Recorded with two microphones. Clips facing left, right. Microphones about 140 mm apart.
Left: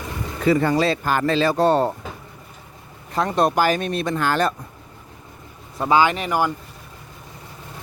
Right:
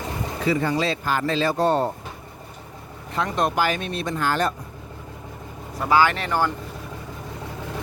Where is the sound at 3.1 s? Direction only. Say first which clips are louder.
Left 4 dB; 35° left (ahead or behind); by 4.5 s 75° left (ahead or behind).